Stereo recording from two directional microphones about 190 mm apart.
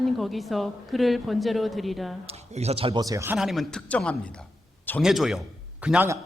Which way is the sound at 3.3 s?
Centre (ahead or behind).